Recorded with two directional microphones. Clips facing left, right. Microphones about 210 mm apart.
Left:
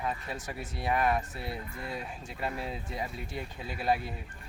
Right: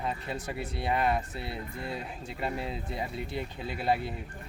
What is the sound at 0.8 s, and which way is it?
Speech, 25° right (ahead or behind).